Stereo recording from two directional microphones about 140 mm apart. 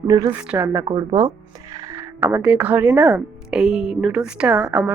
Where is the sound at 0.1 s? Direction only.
25° right (ahead or behind).